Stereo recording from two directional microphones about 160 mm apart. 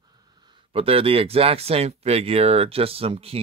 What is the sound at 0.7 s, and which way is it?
Speech, 35° right (ahead or behind).